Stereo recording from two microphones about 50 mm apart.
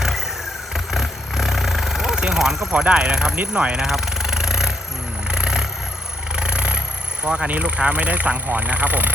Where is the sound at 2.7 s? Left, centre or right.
Right.